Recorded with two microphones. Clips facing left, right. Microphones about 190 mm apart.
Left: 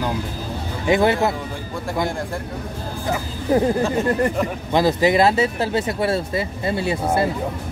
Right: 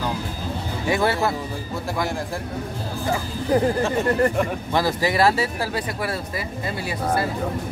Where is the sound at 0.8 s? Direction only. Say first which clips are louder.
Left 4 dB; 20° left (ahead or behind).